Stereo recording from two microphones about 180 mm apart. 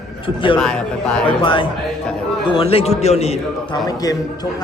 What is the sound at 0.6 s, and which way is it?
Speech, 5° left (ahead or behind).